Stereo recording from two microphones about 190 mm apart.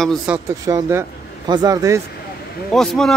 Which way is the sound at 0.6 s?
15° right (ahead or behind).